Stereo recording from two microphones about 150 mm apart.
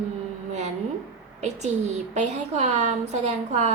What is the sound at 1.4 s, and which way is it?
A woman's voice, 50° right (ahead or behind).